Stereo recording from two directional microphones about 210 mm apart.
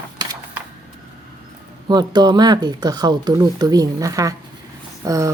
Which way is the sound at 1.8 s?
20° right (ahead or behind).